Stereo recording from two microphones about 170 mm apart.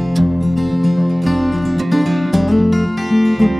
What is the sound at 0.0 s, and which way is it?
Music, centre (ahead or behind).